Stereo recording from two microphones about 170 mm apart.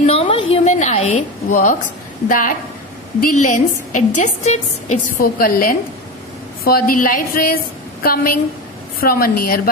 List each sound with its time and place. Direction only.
0.0 s a sound: 35° left (ahead or behind); by 1.8 s 50° left (ahead or behind)
2.2 s a woman's voice: 50° left (ahead or behind)
5.1 s a woman's voice: 60° left (ahead or behind)